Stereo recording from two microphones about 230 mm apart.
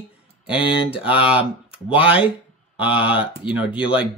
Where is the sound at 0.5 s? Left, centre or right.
Left.